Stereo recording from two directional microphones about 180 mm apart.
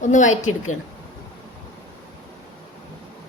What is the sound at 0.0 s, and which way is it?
Speech, 45° left (ahead or behind).